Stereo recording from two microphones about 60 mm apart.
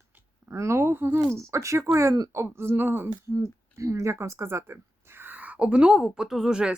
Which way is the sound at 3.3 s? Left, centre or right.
Right.